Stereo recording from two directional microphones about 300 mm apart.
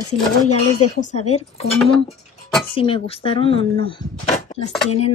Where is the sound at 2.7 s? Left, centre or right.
Centre.